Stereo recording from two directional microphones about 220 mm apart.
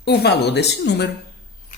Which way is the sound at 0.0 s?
50° left (ahead or behind).